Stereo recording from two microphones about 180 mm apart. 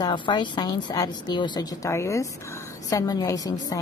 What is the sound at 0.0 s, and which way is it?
A woman's voice, 25° left (ahead or behind).